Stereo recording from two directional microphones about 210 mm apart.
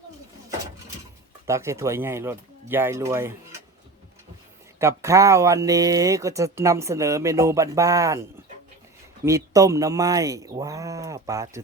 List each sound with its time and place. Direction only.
1.5 s speech: 15° right (ahead or behind)
4.8 s speech: 15° right (ahead or behind)